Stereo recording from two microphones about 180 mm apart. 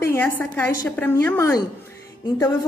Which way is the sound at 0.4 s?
10° left (ahead or behind).